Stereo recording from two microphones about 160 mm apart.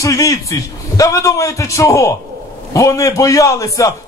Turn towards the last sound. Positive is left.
turn(degrees=20)  # may be behind; listen again after turning